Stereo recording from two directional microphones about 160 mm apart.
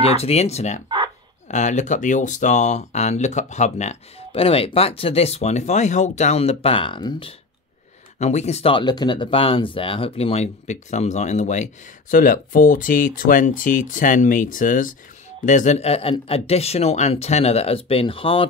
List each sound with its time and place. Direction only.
0.0 s speech: 40° left (ahead or behind)
0.8 s chicken: 30° right (ahead or behind)
1.5 s speech: 50° left (ahead or behind); by 7.3 s 30° left (ahead or behind)
8.2 s speech: 45° left (ahead or behind)